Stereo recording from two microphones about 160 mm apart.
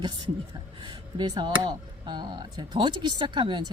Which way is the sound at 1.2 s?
30° right (ahead or behind).